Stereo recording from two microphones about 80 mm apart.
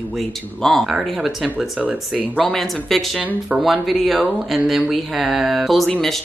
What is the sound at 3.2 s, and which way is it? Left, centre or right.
Speech, centre.